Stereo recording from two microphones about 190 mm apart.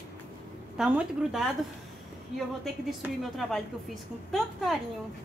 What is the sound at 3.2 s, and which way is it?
Speech, centre (ahead or behind).